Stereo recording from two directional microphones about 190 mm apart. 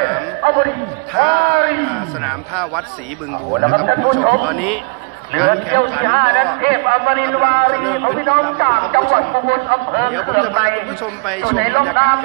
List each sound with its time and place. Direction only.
0.4 s a sound: 50° right (ahead or behind)
1.1 s a man's voice: centre (ahead or behind)
3.6 s speech: 50° right (ahead or behind)
4.5 s a man's voice: centre (ahead or behind)
5.5 s a man's voice: 55° right (ahead or behind)